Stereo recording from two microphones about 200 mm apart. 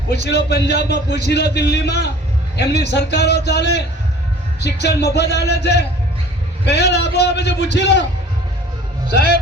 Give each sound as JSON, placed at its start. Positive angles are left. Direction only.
{"t": 0.3, "sound": "a man's voice", "side_deg": 55}